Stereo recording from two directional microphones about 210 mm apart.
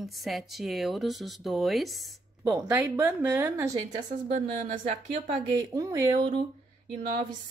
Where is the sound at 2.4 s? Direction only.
10° right (ahead or behind).